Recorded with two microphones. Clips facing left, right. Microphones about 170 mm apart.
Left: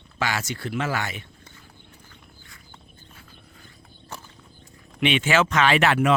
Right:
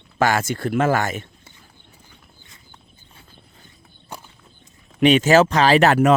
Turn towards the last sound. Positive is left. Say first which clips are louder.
# right 5 dB
turn(degrees=-40)  # may be behind; listen again after turning